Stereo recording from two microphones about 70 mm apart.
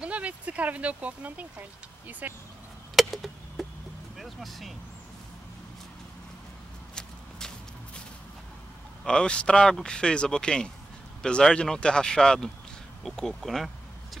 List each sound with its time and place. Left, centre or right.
0.0 s speech: centre
3.0 s chop: centre
4.2 s speech: centre
7.0 s walk: centre
9.0 s speech: centre